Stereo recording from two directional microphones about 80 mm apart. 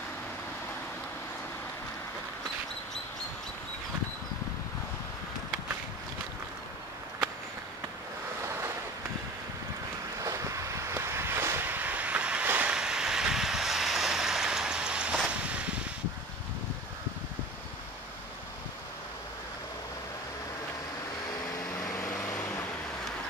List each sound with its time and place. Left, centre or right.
10.2 s a sound: right; by 12.4 s centre
12.4 s boat: right
12.7 s vehicle: centre
22.0 s vehicle: centre